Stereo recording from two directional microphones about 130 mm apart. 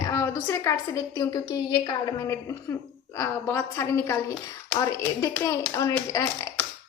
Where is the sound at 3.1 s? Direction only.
20° left (ahead or behind).